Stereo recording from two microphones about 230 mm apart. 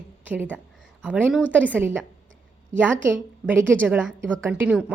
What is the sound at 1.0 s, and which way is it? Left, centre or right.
A woman's voice, centre.